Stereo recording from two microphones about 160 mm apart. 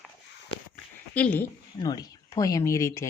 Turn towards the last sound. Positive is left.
turn(degrees=20)  # may be behind; listen again after turning